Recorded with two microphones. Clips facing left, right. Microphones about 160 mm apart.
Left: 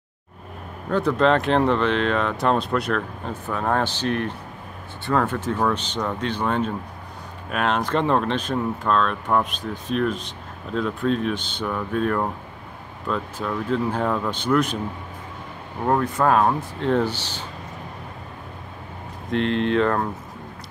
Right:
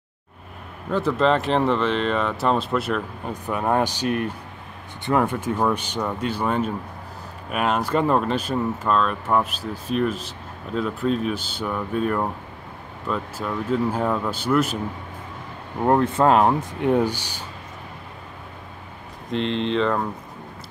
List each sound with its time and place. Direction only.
0.8 s speech: 5° right (ahead or behind)
3.4 s speech: 15° right (ahead or behind)
15.8 s speech: 20° right (ahead or behind)
19.3 s speech: 5° left (ahead or behind)